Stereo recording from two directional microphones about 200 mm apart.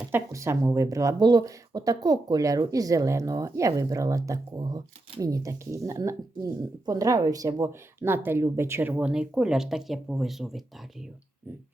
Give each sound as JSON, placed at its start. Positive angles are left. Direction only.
{"t": 0.1, "sound": "speech", "side_deg": -15}